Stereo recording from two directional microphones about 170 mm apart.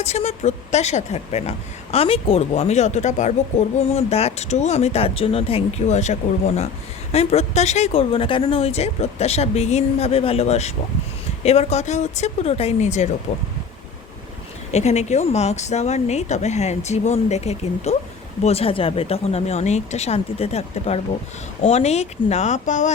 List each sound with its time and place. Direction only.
0.0 s speech: 40° left (ahead or behind)
14.7 s speech: 40° left (ahead or behind)